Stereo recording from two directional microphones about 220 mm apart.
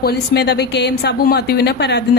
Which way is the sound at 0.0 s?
45° left (ahead or behind).